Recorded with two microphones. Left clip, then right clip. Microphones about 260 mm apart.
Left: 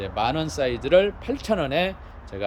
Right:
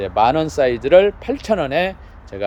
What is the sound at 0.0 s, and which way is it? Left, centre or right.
Speech, centre.